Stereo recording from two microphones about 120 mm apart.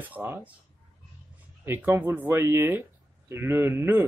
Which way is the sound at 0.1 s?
15° right (ahead or behind).